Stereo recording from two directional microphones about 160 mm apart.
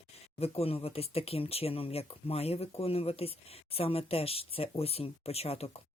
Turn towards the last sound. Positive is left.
turn(degrees=40)  # may be behind; listen again after turning